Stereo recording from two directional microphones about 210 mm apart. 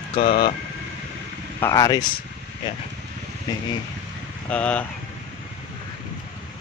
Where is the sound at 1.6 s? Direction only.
15° left (ahead or behind).